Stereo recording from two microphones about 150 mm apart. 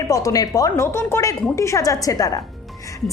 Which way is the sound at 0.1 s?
20° left (ahead or behind).